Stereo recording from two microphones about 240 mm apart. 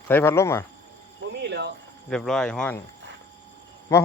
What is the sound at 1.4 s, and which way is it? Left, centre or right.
Speech, right.